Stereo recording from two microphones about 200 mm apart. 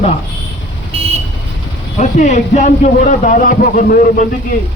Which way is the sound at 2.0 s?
40° left (ahead or behind).